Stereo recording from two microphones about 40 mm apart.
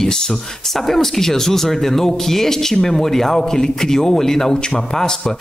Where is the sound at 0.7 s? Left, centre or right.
Centre.